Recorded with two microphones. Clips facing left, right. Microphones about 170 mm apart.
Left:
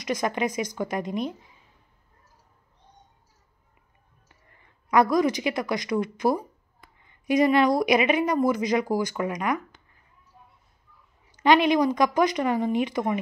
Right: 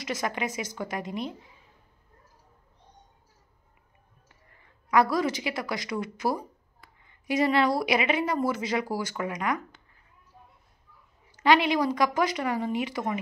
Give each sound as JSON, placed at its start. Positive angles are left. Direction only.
{"t": 0.0, "sound": "a woman's voice", "side_deg": 20}
{"t": 4.9, "sound": "a woman's voice", "side_deg": 20}
{"t": 11.4, "sound": "a woman's voice", "side_deg": 20}